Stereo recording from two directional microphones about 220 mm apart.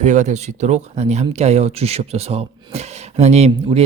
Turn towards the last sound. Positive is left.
turn(degrees=-30)  # may be behind; listen again after turning